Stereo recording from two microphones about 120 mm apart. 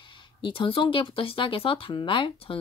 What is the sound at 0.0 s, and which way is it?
Speech, 45° left (ahead or behind).